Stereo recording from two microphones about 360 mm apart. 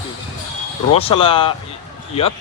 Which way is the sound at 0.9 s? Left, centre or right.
Centre.